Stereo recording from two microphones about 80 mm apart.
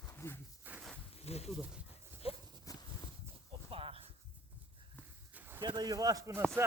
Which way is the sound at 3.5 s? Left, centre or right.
Right.